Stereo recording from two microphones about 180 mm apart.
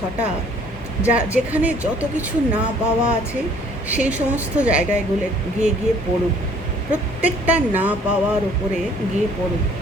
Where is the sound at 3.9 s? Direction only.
10° right (ahead or behind).